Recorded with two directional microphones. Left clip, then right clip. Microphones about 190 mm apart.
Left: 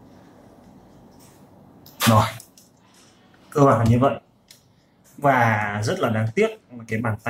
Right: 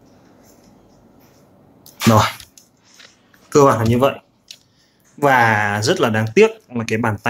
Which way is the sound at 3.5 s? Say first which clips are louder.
Right 5 dB; 50° right (ahead or behind).